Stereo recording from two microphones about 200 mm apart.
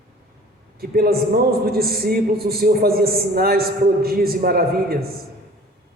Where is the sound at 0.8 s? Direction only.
50° right (ahead or behind).